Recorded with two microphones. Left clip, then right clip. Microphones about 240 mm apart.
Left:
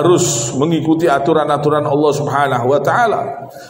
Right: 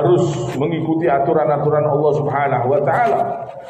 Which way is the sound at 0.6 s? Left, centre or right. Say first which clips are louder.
Left 5 dB; left.